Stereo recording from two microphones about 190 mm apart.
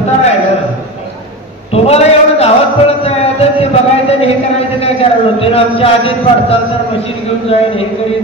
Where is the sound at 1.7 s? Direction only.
30° left (ahead or behind).